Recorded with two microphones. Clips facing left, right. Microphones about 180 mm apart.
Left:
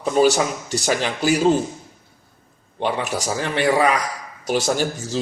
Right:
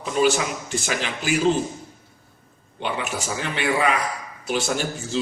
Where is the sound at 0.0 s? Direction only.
40° left (ahead or behind).